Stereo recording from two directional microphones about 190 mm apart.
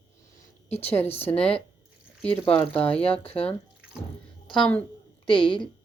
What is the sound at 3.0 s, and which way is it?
Speech, 30° left (ahead or behind).